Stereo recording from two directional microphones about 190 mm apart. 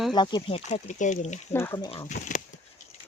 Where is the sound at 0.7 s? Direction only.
40° left (ahead or behind).